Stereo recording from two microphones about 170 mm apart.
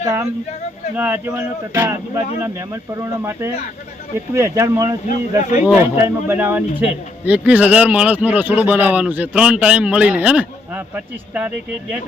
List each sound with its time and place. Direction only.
0.0 s speech: 15° right (ahead or behind)
5.0 s speech: 50° left (ahead or behind)
5.6 s speech: 15° right (ahead or behind)